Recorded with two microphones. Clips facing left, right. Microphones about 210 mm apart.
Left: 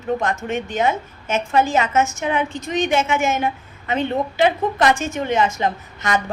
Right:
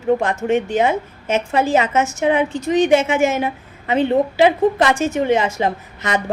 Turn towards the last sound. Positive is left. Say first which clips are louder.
# right 1 dB
turn(degrees=-30)  # may be behind; listen again after turning